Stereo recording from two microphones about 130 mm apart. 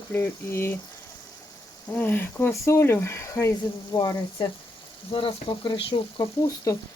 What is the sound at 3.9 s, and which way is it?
Speech, 30° left (ahead or behind).